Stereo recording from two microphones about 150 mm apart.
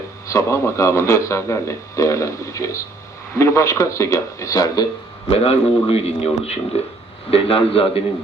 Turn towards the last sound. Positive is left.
turn(degrees=40)  # may be behind; listen again after turning